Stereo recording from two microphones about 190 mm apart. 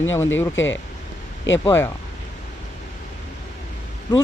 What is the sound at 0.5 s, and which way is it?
Speech, 85° left.